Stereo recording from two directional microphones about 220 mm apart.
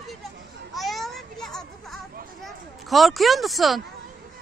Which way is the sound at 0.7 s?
Centre (ahead or behind).